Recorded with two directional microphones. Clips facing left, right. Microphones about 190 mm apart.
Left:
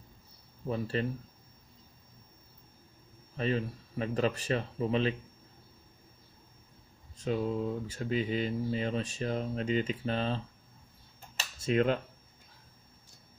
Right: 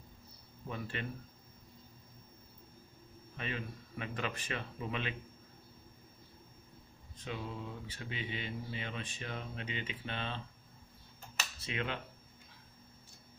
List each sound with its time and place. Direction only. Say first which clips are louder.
0.7 s speech: left 9 dB; 35° left (ahead or behind)
3.3 s speech: left 10 dB; 35° left (ahead or behind)
7.2 s speech: left 11 dB; 40° left (ahead or behind)
11.6 s speech: left 12 dB; 40° left (ahead or behind)